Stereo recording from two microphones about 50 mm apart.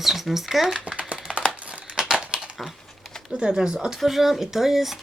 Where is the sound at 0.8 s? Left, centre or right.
Right.